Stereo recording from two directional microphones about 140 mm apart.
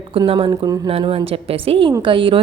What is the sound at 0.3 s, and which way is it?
A woman's voice, 35° right (ahead or behind).